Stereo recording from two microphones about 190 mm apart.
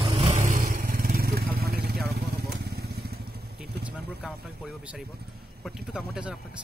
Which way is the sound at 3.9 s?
5° right (ahead or behind).